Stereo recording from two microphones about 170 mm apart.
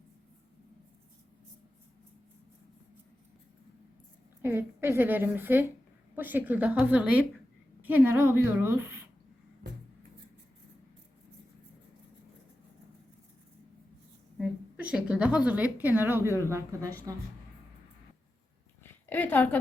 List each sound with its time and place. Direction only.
4.4 s a woman's voice: 15° right (ahead or behind)
14.3 s a woman's voice: 5° right (ahead or behind)
18.8 s a sound: 10° left (ahead or behind)